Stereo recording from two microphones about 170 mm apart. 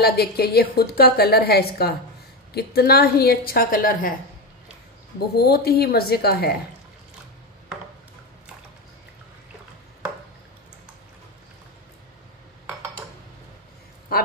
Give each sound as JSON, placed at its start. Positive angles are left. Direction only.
{"t": 0.0, "sound": "a woman's voice", "side_deg": 65}
{"t": 5.3, "sound": "a woman's voice", "side_deg": 65}